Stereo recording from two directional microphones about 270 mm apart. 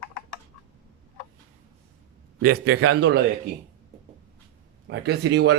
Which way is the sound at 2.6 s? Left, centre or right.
Right.